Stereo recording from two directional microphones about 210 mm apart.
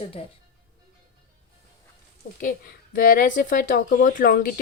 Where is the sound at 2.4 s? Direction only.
40° left (ahead or behind).